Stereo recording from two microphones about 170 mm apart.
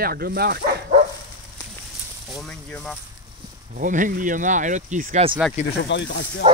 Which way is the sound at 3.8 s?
50° right (ahead or behind).